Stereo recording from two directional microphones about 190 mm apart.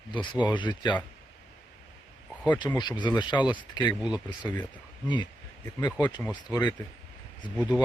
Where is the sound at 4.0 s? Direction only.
5° right (ahead or behind).